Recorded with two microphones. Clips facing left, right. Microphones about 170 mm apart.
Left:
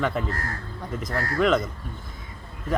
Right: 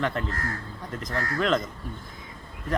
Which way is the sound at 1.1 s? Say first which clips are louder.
Left 1 dB; 35° left (ahead or behind).